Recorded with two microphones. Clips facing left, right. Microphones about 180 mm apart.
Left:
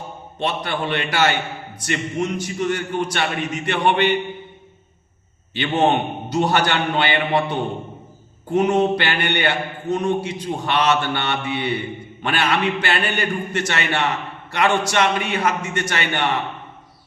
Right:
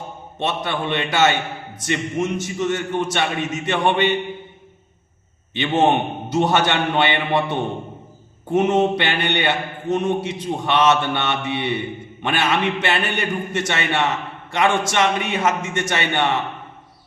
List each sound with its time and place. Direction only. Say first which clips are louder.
0.3 s mantra: even; 25° right (ahead or behind)
6.3 s mantra: right 1 dB; 25° right (ahead or behind)